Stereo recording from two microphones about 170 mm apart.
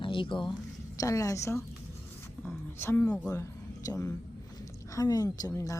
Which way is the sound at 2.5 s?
15° left (ahead or behind).